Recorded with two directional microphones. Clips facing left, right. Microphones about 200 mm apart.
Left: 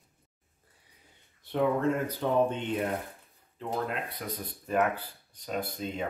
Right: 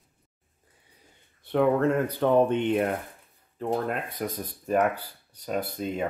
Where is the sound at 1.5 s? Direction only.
65° right (ahead or behind).